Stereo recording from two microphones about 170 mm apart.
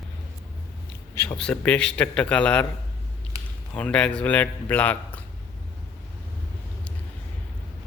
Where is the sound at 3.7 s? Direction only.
5° left (ahead or behind).